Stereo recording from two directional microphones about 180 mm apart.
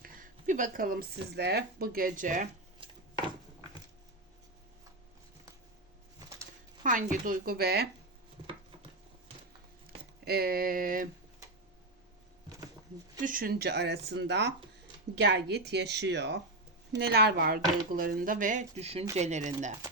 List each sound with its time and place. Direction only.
0.0 s speech: 50° right (ahead or behind)
2.8 s a sound: 25° right (ahead or behind)
6.8 s speech: 45° right (ahead or behind)
10.2 s speech: 55° right (ahead or behind)
13.2 s speech: 55° right (ahead or behind)